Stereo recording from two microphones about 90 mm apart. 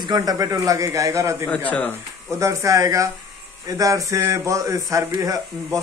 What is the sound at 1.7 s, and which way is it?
Speech, 15° left (ahead or behind).